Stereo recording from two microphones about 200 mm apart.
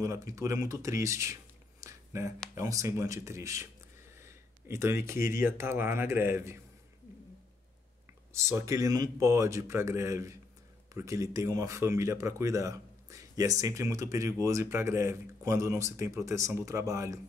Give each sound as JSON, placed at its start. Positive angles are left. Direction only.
{"t": 0.0, "sound": "speech", "side_deg": -15}
{"t": 4.2, "sound": "a sound", "side_deg": -15}
{"t": 5.2, "sound": "speech", "side_deg": -15}
{"t": 8.3, "sound": "speech", "side_deg": -15}